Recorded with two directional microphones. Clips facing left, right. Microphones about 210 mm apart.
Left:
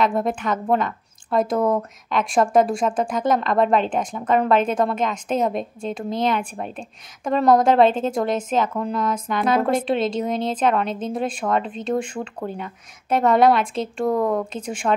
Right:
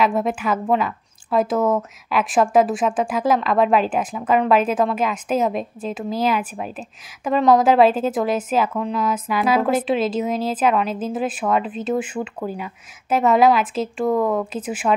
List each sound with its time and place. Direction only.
0.0 s a woman's voice: centre (ahead or behind)